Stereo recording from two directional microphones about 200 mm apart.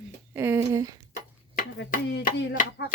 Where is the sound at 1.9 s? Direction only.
45° left (ahead or behind).